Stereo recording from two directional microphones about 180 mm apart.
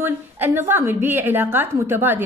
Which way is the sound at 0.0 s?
10° right (ahead or behind).